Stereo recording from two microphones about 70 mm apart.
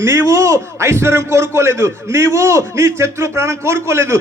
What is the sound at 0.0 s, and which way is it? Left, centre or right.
Speech, right.